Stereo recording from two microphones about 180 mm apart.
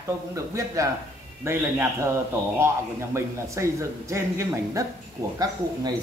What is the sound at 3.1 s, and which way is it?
A man's voice, 15° right (ahead or behind).